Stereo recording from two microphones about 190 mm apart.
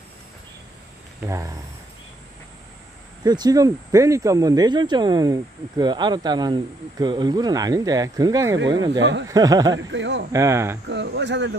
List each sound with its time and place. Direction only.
1.2 s speech: 15° right (ahead or behind)
3.3 s speech: 20° right (ahead or behind)
9.8 s speech: 70° right (ahead or behind)
10.3 s speech: 15° right (ahead or behind)
10.9 s speech: 65° right (ahead or behind)